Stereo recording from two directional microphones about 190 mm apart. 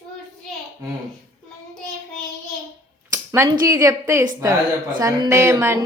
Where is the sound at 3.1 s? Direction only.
15° right (ahead or behind).